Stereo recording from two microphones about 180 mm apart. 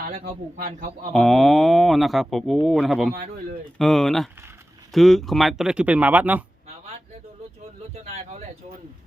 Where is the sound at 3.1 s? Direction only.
55° right (ahead or behind).